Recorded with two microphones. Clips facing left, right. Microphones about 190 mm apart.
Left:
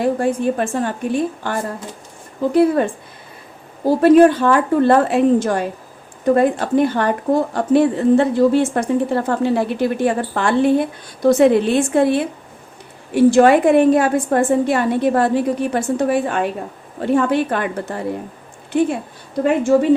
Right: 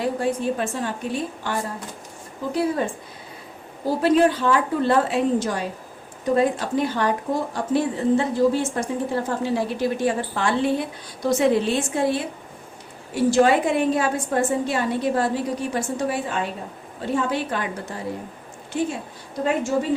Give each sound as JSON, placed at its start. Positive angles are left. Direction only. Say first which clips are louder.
{"t": 0.0, "sound": "a woman's voice", "louder": "left 6 dB", "side_deg": 50}
{"t": 4.0, "sound": "a woman's voice", "louder": "left 8 dB", "side_deg": 55}